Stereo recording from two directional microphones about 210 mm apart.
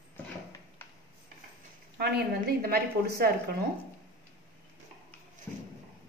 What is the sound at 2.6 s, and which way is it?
Dishes, 45° right (ahead or behind).